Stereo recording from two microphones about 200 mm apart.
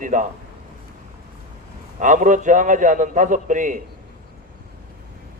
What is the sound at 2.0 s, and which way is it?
Speech, 40° right (ahead or behind).